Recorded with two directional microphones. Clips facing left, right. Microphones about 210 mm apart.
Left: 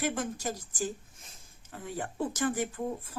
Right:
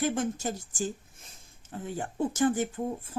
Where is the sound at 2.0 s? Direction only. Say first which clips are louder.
Right 4 dB; 25° right (ahead or behind).